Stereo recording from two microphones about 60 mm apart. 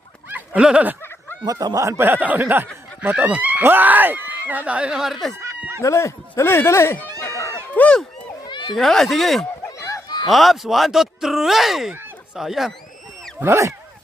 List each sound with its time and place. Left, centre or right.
0.3 s a sound: right
0.6 s speech: centre
1.5 s speech: right
2.0 s speech: right; by 5.3 s centre
5.8 s speech: left
7.2 s a sound: left
7.7 s speech: left
8.7 s speech: centre
9.7 s a sound: left
10.2 s speech: centre
13.4 s speech: right